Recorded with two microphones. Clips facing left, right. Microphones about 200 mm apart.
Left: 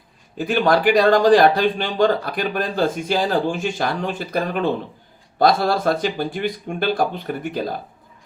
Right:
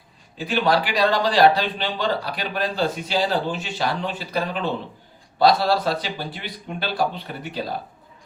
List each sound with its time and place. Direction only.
0.3 s speech: 50° left (ahead or behind)